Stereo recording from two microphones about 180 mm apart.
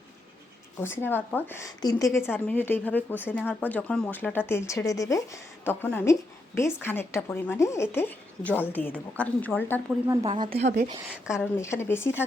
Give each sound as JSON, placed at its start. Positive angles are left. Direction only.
{"t": 0.8, "sound": "a woman's voice", "side_deg": 10}
{"t": 10.2, "sound": "a woman's voice", "side_deg": -30}
{"t": 11.3, "sound": "a woman's voice", "side_deg": 15}